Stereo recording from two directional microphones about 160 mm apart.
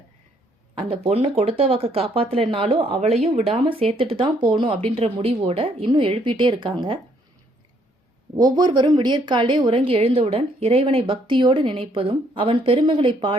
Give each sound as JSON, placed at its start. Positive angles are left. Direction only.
{"t": 0.8, "sound": "a woman's voice", "side_deg": -40}
{"t": 8.5, "sound": "a woman's voice", "side_deg": -25}